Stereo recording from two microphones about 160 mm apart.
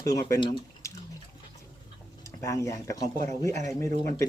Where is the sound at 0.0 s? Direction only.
20° left (ahead or behind).